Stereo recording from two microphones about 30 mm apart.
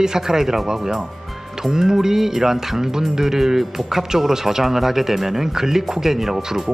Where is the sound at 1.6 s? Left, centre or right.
Centre.